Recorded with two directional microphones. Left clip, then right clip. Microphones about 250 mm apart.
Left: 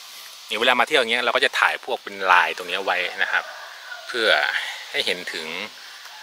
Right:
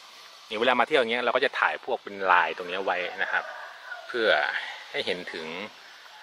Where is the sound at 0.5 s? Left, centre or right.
Centre.